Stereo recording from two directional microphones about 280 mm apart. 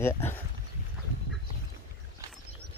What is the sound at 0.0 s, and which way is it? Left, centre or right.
Speech, centre.